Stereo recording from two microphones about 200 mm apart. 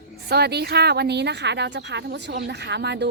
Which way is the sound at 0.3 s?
55° right (ahead or behind).